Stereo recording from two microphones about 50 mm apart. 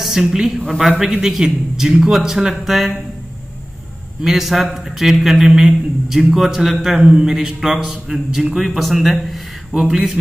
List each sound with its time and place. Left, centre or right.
0.0 s a woman's voice: centre
4.2 s a man's voice: centre
7.0 s a man's voice: centre